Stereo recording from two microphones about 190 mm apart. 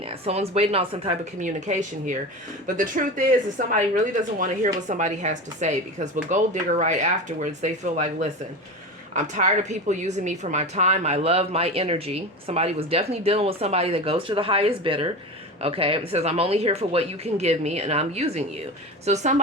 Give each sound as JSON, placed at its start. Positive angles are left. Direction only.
{"t": 0.0, "sound": "a woman's voice", "side_deg": -30}